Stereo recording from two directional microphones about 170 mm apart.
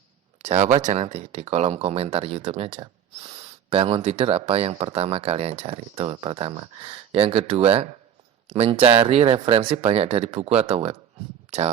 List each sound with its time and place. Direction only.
0.4 s speech: 40° right (ahead or behind)